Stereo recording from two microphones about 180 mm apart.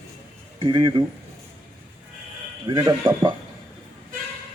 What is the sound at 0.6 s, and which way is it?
Speech, 25° right (ahead or behind).